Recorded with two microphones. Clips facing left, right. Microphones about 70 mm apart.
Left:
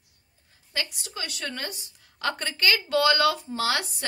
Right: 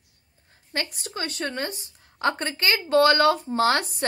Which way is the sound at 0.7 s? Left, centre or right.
Right.